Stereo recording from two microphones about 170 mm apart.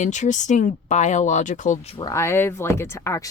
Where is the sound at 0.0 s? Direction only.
45° left (ahead or behind).